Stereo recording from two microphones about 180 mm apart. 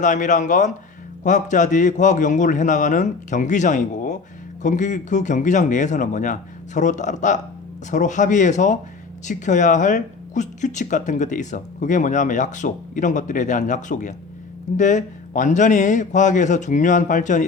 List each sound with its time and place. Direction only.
0.0 s speech: 45° left (ahead or behind)